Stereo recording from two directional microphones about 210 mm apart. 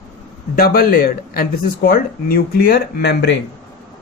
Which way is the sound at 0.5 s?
45° left (ahead or behind).